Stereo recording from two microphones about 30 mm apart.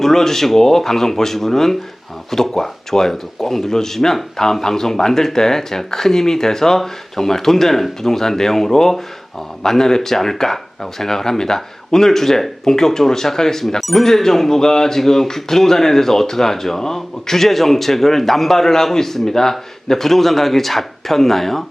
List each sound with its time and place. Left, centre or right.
0.0 s speech: centre